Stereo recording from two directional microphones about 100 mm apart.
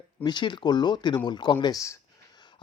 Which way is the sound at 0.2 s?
50° left (ahead or behind).